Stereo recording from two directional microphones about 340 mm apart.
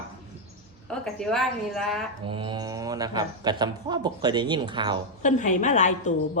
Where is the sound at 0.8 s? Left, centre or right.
Centre.